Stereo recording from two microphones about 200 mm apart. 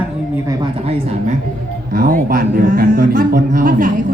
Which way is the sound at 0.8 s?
30° right (ahead or behind).